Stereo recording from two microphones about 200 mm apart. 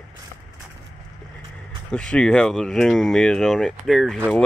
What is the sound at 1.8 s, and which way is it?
Speech, 5° left (ahead or behind).